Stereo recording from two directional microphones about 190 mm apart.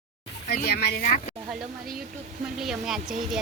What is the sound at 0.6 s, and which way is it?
Speech, 55° left (ahead or behind).